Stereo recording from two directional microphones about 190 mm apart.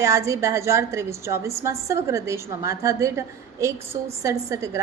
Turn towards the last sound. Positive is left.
turn(degrees=-15)  # may be behind; listen again after turning